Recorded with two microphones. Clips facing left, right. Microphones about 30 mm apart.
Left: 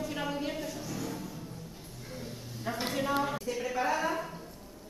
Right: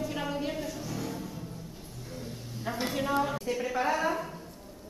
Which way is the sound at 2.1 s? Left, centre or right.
Centre.